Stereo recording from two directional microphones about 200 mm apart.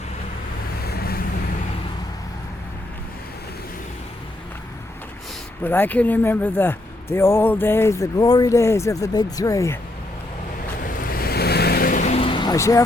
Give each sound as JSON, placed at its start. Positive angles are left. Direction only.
{"t": 0.9, "sound": "vehicle", "side_deg": 50}
{"t": 5.6, "sound": "speech", "side_deg": 10}
{"t": 10.8, "sound": "vehicle", "side_deg": 45}